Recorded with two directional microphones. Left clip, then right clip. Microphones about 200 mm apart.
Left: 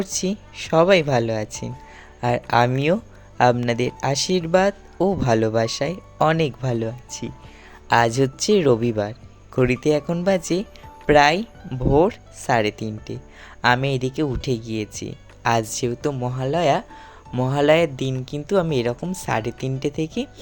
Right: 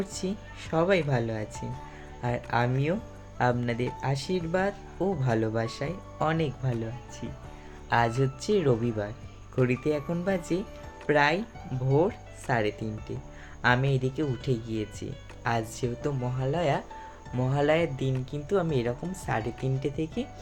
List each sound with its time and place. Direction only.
0.0 s speech: 50° left (ahead or behind)